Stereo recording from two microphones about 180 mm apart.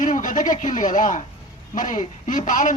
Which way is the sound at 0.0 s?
45° left (ahead or behind).